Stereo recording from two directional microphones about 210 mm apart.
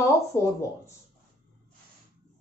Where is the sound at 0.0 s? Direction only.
15° left (ahead or behind).